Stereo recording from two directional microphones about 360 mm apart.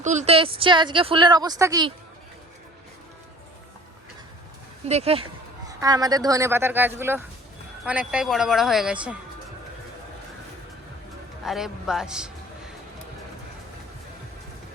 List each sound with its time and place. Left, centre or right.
0.0 s a woman's voice: centre
4.9 s a woman's voice: centre
11.4 s speech: centre